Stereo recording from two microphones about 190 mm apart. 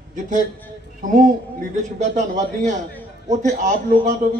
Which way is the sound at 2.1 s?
40° right (ahead or behind).